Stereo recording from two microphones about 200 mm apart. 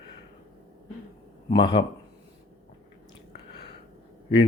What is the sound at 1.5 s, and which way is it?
Speech, 25° left (ahead or behind).